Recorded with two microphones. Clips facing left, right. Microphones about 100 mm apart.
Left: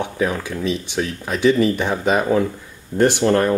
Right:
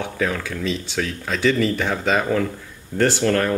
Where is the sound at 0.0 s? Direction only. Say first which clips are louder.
Left 2 dB; 20° left (ahead or behind).